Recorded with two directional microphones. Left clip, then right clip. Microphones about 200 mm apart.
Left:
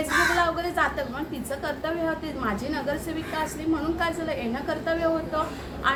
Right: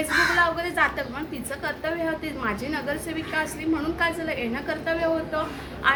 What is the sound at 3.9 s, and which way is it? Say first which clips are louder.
A woman's voice: right 2 dB; 15° right (ahead or behind).